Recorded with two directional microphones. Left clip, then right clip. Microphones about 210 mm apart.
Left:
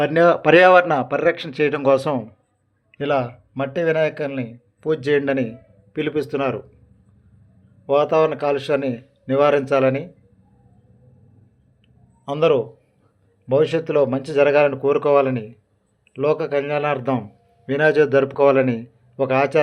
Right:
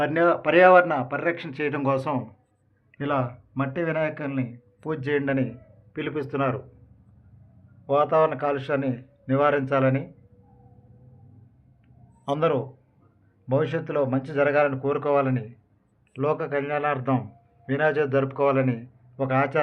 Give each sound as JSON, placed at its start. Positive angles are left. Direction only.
{"t": 0.0, "sound": "a man's voice", "side_deg": 30}
{"t": 7.9, "sound": "speech", "side_deg": 25}
{"t": 12.4, "sound": "a man's voice", "side_deg": 25}